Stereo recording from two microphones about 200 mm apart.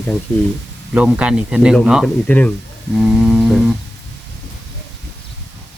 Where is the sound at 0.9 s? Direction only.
5° right (ahead or behind).